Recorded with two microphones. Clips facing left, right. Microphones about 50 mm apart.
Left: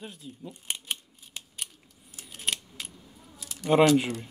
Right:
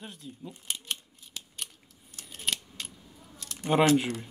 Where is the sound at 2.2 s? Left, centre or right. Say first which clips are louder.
Left 1 dB; centre.